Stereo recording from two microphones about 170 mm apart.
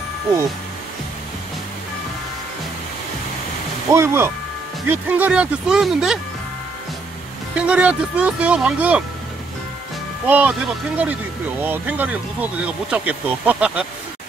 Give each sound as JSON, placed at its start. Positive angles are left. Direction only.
{"t": 3.9, "sound": "speech", "side_deg": -15}
{"t": 7.5, "sound": "speech", "side_deg": -5}
{"t": 10.2, "sound": "speech", "side_deg": -10}
{"t": 11.6, "sound": "speech", "side_deg": -10}